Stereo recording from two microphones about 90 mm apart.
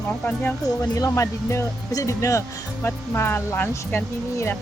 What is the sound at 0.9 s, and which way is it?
Speech, 35° left (ahead or behind).